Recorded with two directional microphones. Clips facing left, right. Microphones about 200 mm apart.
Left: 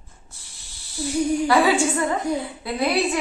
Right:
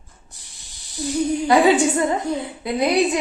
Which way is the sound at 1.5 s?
20° right (ahead or behind).